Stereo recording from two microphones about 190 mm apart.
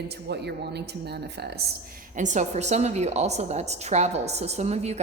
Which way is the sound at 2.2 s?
40° right (ahead or behind).